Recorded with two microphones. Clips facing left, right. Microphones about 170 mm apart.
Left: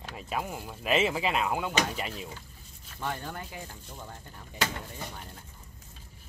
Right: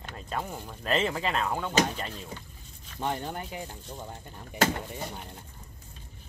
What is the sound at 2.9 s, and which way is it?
Speech, 20° right (ahead or behind).